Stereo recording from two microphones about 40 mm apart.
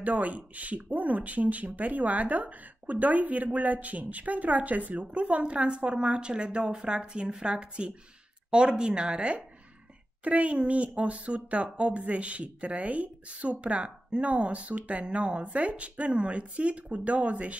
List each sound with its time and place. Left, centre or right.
0.0 s speech: right
10.2 s speech: right